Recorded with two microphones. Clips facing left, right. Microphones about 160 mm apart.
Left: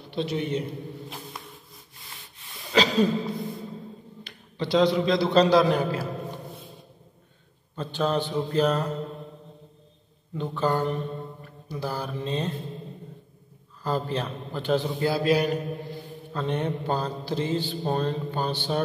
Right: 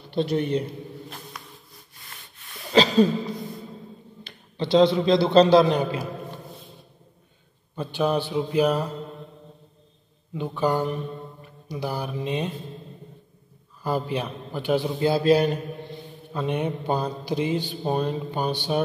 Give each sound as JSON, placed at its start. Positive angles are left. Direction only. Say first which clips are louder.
{"t": 0.1, "sound": "a man's voice", "louder": "right 4 dB", "side_deg": 0}
{"t": 2.8, "sound": "speech", "louder": "right 3 dB", "side_deg": 0}
{"t": 4.6, "sound": "a man's voice", "louder": "right 3 dB", "side_deg": -25}
{"t": 7.7, "sound": "speech", "louder": "right 2 dB", "side_deg": -10}
{"t": 10.3, "sound": "speech", "louder": "right 2 dB", "side_deg": -10}
{"t": 13.8, "sound": "speech", "louder": "right 1 dB", "side_deg": -10}
{"t": 15.2, "sound": "a man's voice", "louder": "right 4 dB", "side_deg": -30}
{"t": 15.5, "sound": "mantra", "louder": "left 2 dB", "side_deg": 0}
{"t": 16.3, "sound": "speech", "louder": "right 1 dB", "side_deg": -10}